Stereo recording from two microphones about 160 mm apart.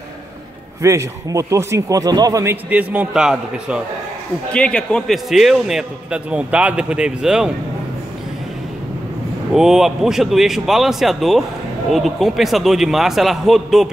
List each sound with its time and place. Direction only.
0.8 s speech: 20° right (ahead or behind)
4.5 s a man's voice: 5° left (ahead or behind)
9.5 s a man's voice: 5° right (ahead or behind)